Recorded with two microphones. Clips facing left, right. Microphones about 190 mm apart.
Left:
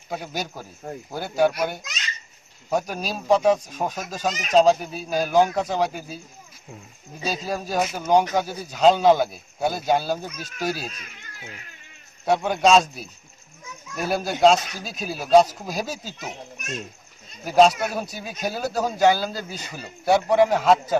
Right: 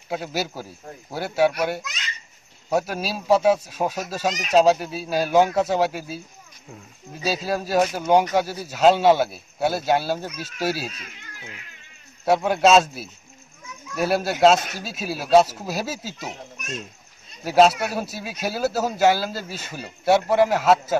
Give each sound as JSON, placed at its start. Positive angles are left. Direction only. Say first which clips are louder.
{"t": 0.3, "sound": "speech", "louder": "right 3 dB", "side_deg": -5}
{"t": 7.2, "sound": "speech", "louder": "right 3 dB", "side_deg": -5}
{"t": 12.3, "sound": "speech", "louder": "right 1 dB", "side_deg": -5}
{"t": 17.5, "sound": "speech", "louder": "even", "side_deg": -5}